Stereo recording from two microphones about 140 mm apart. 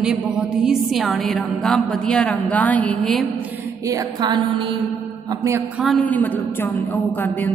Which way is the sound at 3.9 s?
30° right (ahead or behind).